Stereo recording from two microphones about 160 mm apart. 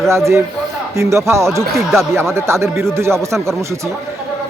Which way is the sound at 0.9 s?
20° right (ahead or behind).